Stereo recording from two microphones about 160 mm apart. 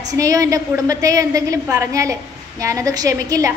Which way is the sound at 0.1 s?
20° right (ahead or behind).